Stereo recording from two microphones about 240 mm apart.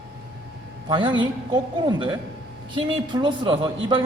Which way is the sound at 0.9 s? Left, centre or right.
Right.